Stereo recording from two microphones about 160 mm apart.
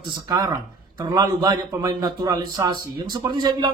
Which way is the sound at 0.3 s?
25° right (ahead or behind).